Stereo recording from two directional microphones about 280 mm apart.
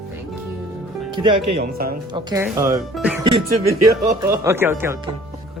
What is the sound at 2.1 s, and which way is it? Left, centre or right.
Speech, centre.